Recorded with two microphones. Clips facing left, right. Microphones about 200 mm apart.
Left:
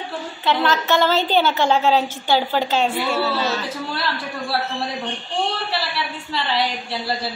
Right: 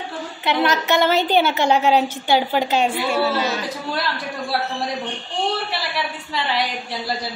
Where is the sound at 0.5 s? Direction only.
20° right (ahead or behind).